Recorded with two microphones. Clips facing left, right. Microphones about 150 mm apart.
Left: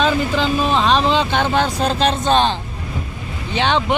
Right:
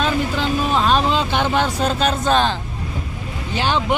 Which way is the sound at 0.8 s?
5° right (ahead or behind).